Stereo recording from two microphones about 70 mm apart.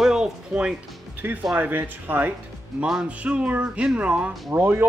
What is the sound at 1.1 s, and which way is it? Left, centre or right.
Speech, right.